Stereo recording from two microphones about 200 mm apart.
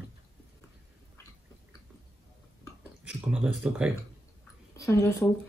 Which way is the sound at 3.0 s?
5° right (ahead or behind).